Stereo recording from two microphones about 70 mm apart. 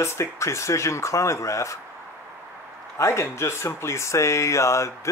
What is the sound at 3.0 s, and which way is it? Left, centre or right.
Speech, left.